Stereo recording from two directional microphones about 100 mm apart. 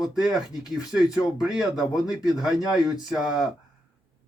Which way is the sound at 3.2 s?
5° right (ahead or behind).